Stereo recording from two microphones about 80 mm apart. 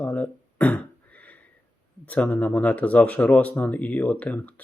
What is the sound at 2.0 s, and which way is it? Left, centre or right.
Speech, centre.